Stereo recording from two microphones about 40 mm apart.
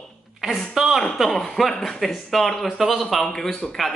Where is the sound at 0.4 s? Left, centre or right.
Centre.